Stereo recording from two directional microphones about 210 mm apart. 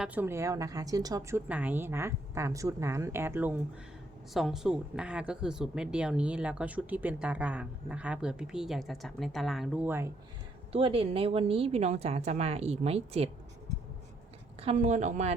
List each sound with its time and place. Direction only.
0.0 s a woman's voice: 10° right (ahead or behind)
10.7 s a woman's voice: 25° right (ahead or behind)
14.6 s a woman's voice: 30° right (ahead or behind)